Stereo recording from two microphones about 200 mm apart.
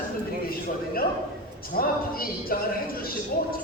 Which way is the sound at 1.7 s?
45° left (ahead or behind).